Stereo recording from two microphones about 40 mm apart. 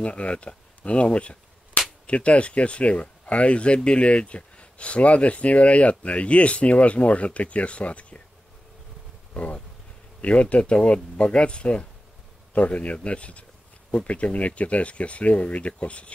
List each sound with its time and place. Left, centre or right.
0.0 s speech: left
9.3 s speech: left